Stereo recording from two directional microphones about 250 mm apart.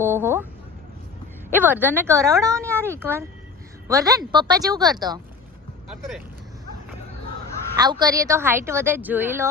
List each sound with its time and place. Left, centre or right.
0.0 s a sound: centre
1.5 s a woman's voice: centre
5.9 s speech: centre
7.8 s a woman's voice: centre